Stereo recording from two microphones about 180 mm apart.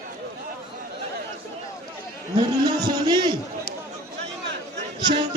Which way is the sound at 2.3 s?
25° right (ahead or behind).